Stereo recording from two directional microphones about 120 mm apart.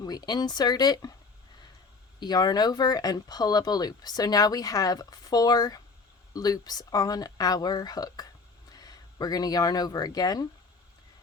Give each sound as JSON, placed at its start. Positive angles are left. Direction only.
{"t": 0.0, "sound": "speech", "side_deg": 35}
{"t": 2.2, "sound": "speech", "side_deg": 35}